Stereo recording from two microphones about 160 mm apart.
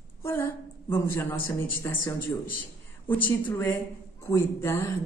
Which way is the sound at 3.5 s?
20° left (ahead or behind).